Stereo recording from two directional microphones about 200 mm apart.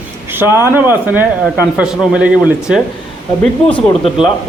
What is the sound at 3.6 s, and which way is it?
Speech, 30° left (ahead or behind).